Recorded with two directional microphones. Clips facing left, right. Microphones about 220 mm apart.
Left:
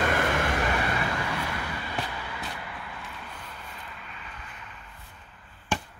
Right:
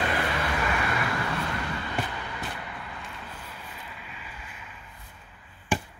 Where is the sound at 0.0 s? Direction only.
50° left (ahead or behind).